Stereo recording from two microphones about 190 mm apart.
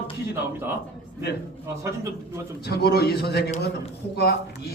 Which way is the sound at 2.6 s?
55° left (ahead or behind).